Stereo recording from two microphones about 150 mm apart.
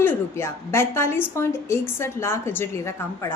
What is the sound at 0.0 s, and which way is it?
A woman's voice, 15° left (ahead or behind).